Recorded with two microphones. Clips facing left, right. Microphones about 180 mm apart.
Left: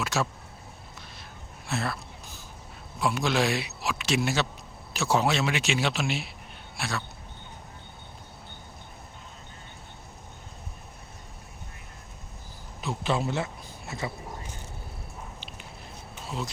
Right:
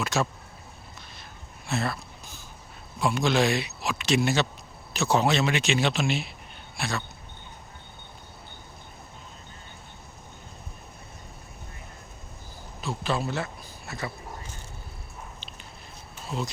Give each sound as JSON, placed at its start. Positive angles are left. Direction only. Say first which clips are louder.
{"t": 0.0, "sound": "speech", "louder": "right 2 dB", "side_deg": 5}
{"t": 1.6, "sound": "a sound", "louder": "right 2 dB", "side_deg": 0}
{"t": 3.0, "sound": "speech", "louder": "right 2 dB", "side_deg": 5}
{"t": 12.8, "sound": "speech", "louder": "left 1 dB", "side_deg": 20}